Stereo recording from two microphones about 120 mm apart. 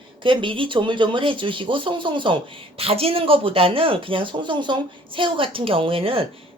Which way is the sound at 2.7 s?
55° right (ahead or behind).